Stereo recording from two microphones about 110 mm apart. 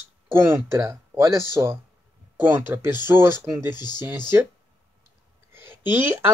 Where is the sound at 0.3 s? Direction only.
25° right (ahead or behind).